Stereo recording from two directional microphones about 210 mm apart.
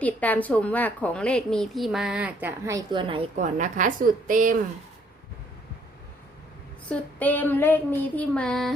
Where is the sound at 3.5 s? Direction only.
35° right (ahead or behind).